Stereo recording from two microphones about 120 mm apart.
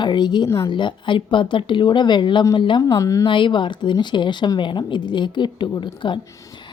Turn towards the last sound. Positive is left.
turn(degrees=40)  # may be behind; listen again after turning